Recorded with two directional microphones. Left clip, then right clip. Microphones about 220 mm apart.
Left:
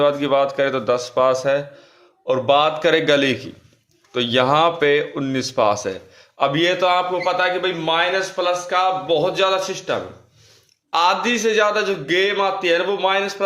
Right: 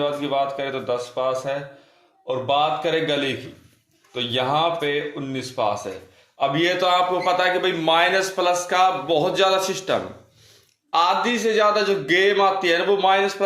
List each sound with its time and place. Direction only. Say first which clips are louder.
0.0 s a man's voice: left 6 dB; 35° left (ahead or behind)
6.6 s a man's voice: left 1 dB; 15° left (ahead or behind)
10.9 s a man's voice: left 2 dB; 15° left (ahead or behind)